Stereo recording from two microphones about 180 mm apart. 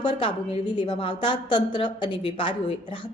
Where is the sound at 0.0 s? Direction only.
25° left (ahead or behind).